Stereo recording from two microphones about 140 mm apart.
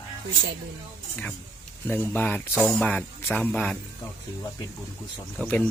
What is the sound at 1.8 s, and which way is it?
Speech, 15° left (ahead or behind).